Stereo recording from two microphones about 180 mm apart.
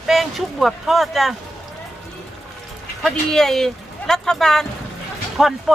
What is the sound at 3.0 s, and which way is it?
Speech, centre (ahead or behind).